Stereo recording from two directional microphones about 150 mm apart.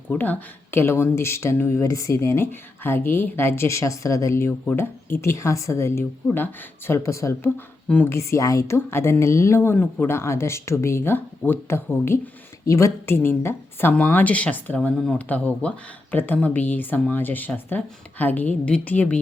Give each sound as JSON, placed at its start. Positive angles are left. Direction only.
{"t": 0.1, "sound": "a woman's voice", "side_deg": 10}